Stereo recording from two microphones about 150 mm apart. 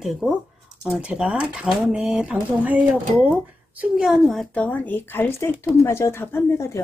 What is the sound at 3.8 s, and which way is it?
A woman's voice, 5° right (ahead or behind).